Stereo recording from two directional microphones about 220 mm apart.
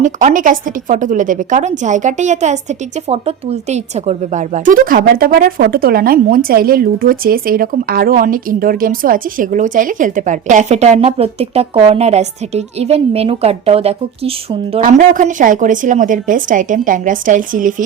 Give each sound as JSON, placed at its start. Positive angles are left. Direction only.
{"t": 0.0, "sound": "a woman's voice", "side_deg": -35}
{"t": 14.8, "sound": "a woman's voice", "side_deg": -35}